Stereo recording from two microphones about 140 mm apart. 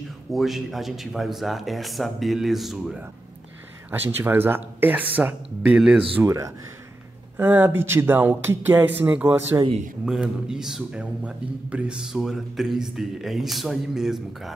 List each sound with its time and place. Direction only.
0.3 s a man's voice: centre (ahead or behind)
3.9 s speech: 15° right (ahead or behind)
6.1 s a man's voice: 20° right (ahead or behind); by 14.5 s 5° right (ahead or behind)